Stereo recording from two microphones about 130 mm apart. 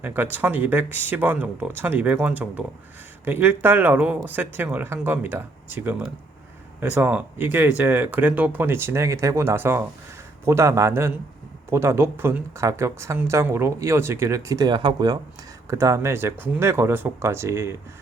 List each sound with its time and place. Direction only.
0.0 s speech: 15° right (ahead or behind)